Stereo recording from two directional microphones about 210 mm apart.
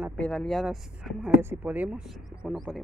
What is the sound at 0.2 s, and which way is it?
Speech, 5° left (ahead or behind).